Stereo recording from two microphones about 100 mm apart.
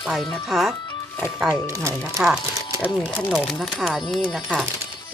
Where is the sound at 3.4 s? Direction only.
5° left (ahead or behind).